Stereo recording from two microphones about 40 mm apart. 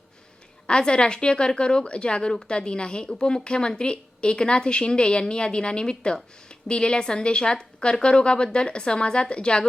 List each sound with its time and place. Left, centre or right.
0.7 s a woman's voice: left